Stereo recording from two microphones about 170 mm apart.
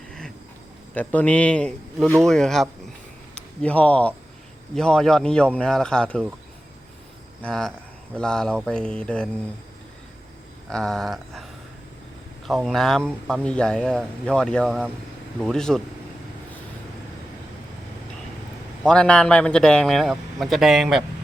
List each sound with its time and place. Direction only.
0.9 s a man's voice: 10° left (ahead or behind)
7.4 s a man's voice: 5° left (ahead or behind)
10.7 s a man's voice: centre (ahead or behind)
12.5 s a man's voice: centre (ahead or behind)
18.8 s a man's voice: 5° left (ahead or behind)